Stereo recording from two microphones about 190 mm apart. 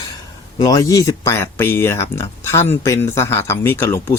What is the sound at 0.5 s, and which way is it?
Speech, 20° left (ahead or behind).